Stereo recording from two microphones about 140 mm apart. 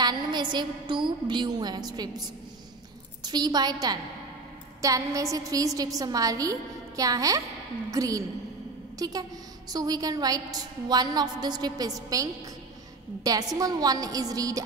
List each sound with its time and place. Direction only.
0.0 s a woman's voice: 30° right (ahead or behind)